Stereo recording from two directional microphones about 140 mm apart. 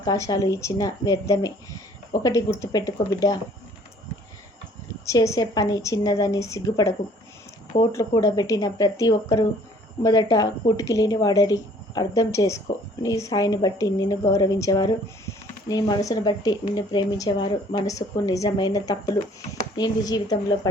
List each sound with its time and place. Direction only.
0.0 s a woman's voice: 25° left (ahead or behind)
5.0 s a woman's voice: 20° left (ahead or behind)
17.8 s a woman's voice: 25° left (ahead or behind)